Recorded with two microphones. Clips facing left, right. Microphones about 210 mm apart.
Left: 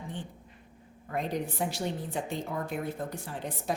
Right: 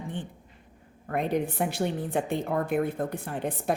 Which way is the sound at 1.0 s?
60° right (ahead or behind).